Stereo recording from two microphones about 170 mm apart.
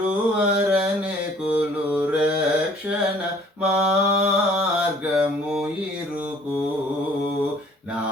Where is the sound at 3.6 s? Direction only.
20° right (ahead or behind).